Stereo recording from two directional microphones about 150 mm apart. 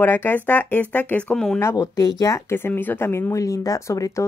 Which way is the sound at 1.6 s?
20° left (ahead or behind).